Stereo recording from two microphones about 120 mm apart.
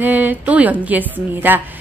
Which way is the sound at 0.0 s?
15° right (ahead or behind).